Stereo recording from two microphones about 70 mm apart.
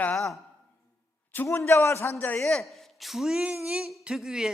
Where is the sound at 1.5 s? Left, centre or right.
Left.